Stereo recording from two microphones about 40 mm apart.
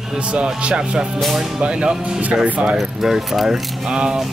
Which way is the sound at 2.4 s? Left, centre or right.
Right.